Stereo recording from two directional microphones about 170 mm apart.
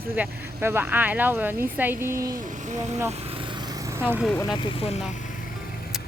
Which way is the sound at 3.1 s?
35° right (ahead or behind).